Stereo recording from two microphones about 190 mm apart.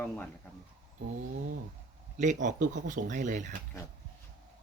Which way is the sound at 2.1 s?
40° right (ahead or behind).